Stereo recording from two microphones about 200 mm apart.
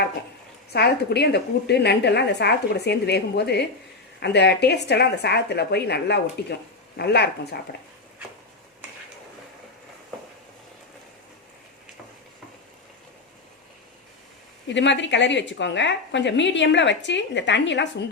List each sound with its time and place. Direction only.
0.7 s a woman's voice: 55° left (ahead or behind)
14.7 s a woman's voice: 65° left (ahead or behind)